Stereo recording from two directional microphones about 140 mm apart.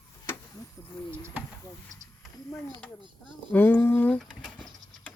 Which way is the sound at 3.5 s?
15° left (ahead or behind).